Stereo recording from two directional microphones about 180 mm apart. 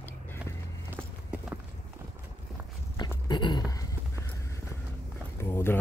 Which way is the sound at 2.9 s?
25° left (ahead or behind).